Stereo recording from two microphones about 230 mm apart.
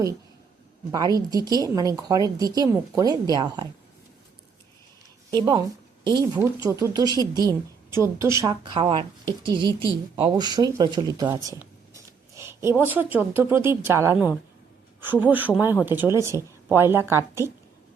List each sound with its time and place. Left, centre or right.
0.9 s speech: centre
5.3 s speech: centre